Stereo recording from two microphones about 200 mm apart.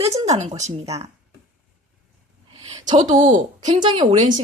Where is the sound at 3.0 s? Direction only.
40° right (ahead or behind).